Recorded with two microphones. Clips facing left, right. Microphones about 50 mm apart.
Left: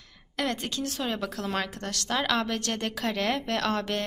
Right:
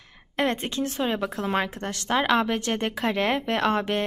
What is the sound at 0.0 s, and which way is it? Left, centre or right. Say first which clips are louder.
A woman's voice: right 5 dB; right.